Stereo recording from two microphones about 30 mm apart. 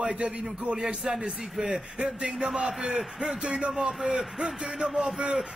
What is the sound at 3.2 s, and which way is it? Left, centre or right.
Speech, right.